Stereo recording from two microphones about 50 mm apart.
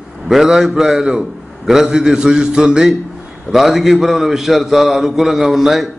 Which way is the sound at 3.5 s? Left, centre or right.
Centre.